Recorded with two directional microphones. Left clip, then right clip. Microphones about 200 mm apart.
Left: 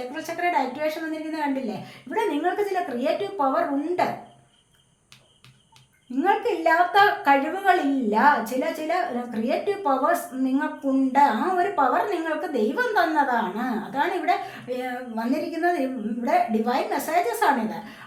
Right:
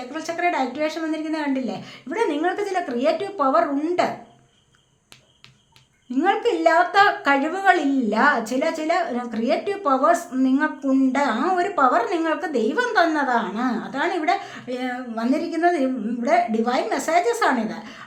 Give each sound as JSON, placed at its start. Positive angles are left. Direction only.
{"t": 0.1, "sound": "a woman's voice", "side_deg": -35}
{"t": 6.2, "sound": "a woman's voice", "side_deg": -35}